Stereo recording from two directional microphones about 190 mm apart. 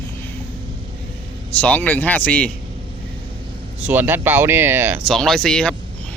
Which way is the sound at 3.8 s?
10° right (ahead or behind).